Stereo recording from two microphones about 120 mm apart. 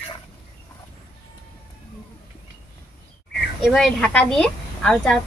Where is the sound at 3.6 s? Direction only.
Centre (ahead or behind).